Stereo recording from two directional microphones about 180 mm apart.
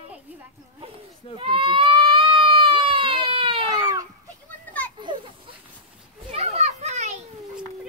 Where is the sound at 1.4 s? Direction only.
30° right (ahead or behind).